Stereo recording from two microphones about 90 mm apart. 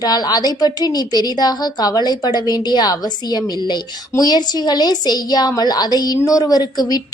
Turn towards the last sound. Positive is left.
turn(degrees=45)  # may be behind; listen again after turning